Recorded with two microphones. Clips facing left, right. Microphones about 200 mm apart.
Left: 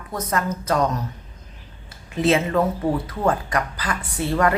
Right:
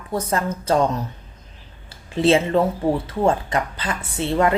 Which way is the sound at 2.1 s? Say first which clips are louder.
Right 2 dB; 30° right (ahead or behind).